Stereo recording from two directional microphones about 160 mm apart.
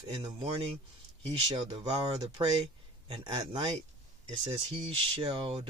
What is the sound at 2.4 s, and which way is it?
A man's voice, 30° right (ahead or behind).